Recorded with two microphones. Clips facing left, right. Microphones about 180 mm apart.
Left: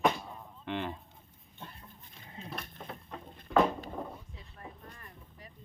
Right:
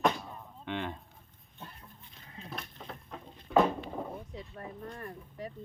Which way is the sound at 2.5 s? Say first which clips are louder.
Even; centre (ahead or behind).